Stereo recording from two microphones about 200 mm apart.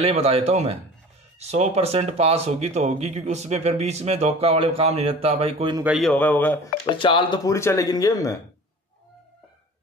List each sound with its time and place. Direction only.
0.0 s speech: 30° right (ahead or behind)
5.9 s speech: centre (ahead or behind)
6.9 s speech: 25° left (ahead or behind)